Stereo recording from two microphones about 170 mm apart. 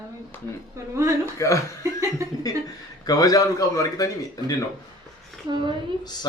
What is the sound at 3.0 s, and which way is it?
A man's voice, 20° left (ahead or behind).